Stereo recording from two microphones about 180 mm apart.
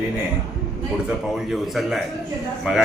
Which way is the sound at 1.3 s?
Centre (ahead or behind).